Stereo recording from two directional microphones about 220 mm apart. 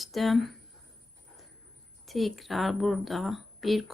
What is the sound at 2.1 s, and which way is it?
Speech, centre (ahead or behind).